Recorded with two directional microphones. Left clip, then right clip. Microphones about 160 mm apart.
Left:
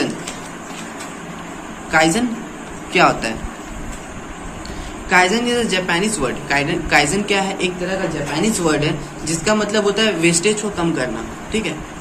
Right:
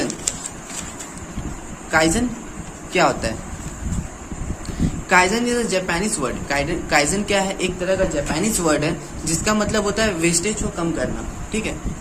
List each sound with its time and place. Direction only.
1.9 s speech: 45° right (ahead or behind)
5.0 s speech: 55° right (ahead or behind); by 11.1 s 35° right (ahead or behind)